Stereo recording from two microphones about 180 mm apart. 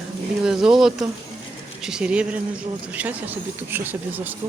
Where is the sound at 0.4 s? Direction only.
5° right (ahead or behind).